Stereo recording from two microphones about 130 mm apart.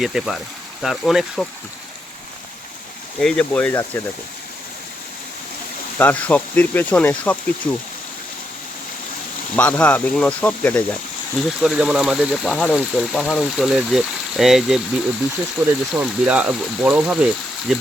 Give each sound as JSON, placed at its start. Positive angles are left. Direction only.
{"t": 0.0, "sound": "speech", "side_deg": 0}
{"t": 3.2, "sound": "speech", "side_deg": 5}
{"t": 6.0, "sound": "speech", "side_deg": 15}
{"t": 9.6, "sound": "speech", "side_deg": 10}
{"t": 11.3, "sound": "speech", "side_deg": -5}
{"t": 15.6, "sound": "speech", "side_deg": -15}